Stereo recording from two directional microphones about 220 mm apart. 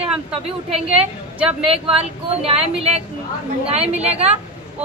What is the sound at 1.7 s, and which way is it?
Speech, 25° right (ahead or behind).